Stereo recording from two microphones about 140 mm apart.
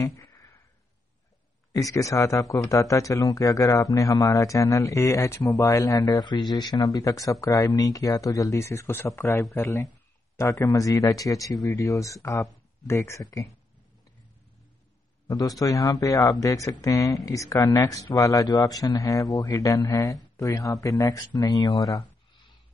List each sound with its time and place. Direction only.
0.0 s a sound: 20° left (ahead or behind)
1.7 s speech: 25° left (ahead or behind)
15.2 s a man's voice: 25° left (ahead or behind)